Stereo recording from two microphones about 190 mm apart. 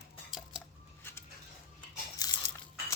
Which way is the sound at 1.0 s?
10° left (ahead or behind).